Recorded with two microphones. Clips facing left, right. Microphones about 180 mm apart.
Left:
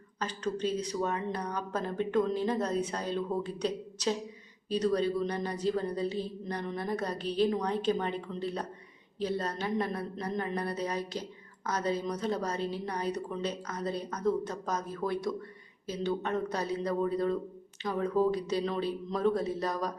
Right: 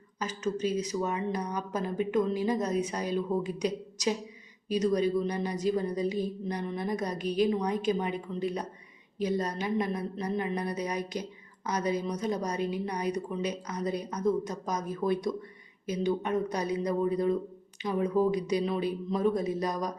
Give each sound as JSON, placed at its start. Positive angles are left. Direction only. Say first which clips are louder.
{"t": 0.2, "sound": "a woman's voice", "louder": "right 2 dB", "side_deg": -5}